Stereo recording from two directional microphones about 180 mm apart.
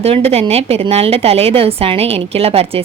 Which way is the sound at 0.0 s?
35° right (ahead or behind).